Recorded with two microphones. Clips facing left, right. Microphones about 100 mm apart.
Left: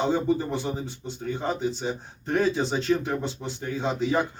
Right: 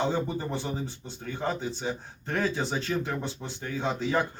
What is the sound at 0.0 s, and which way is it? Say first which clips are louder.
Speech: left 5 dB; 20° left (ahead or behind).